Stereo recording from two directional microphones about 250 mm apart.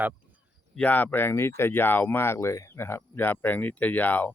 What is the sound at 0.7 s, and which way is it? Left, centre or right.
Speech, centre.